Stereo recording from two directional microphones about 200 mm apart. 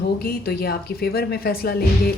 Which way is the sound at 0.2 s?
50° left (ahead or behind).